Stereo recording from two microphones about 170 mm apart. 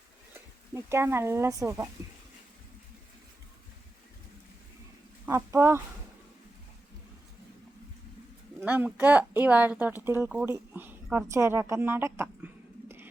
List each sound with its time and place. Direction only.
0.7 s a woman's voice: 15° right (ahead or behind)
5.2 s speech: 15° right (ahead or behind)
8.6 s a woman's voice: 10° right (ahead or behind)